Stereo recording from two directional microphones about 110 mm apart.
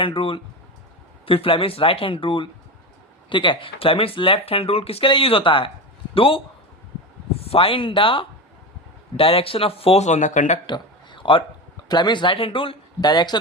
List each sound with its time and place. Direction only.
0.0 s speech: 55° left (ahead or behind)
7.4 s speech: 60° left (ahead or behind); by 10.6 s 90° left
10.7 s a sound: 50° left (ahead or behind)
11.9 s speech: 40° left (ahead or behind)
13.0 s speech: 40° left (ahead or behind)